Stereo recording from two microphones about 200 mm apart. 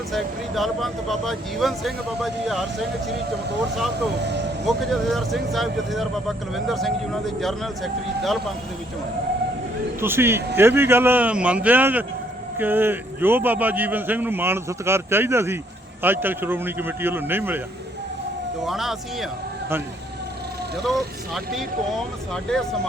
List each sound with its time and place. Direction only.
0.1 s speech: centre (ahead or behind)
4.2 s speech: 60° right (ahead or behind)
4.6 s speech: centre (ahead or behind)
10.0 s a man's voice: 10° right (ahead or behind)
18.6 s speech: centre (ahead or behind)
20.8 s speech: centre (ahead or behind)